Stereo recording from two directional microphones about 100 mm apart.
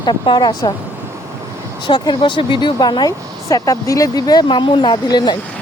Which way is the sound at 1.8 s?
50° left (ahead or behind).